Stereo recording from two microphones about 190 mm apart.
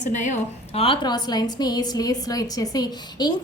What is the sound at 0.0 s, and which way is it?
A woman's voice, 40° left (ahead or behind).